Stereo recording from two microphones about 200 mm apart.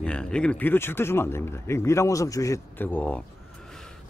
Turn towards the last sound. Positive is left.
turn(degrees=5)  # may be behind; listen again after turning